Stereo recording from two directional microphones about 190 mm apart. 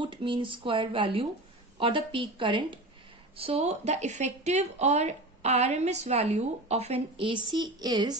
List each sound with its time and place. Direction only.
0.0 s speech: 25° right (ahead or behind)